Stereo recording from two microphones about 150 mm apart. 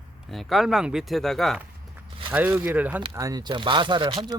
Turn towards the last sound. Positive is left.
turn(degrees=-30)  # may be behind; listen again after turning